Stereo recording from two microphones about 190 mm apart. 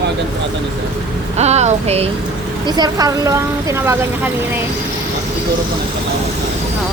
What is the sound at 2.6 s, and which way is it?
A woman's voice, 20° right (ahead or behind).